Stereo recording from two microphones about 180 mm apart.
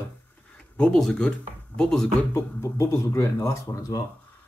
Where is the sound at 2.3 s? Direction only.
15° left (ahead or behind).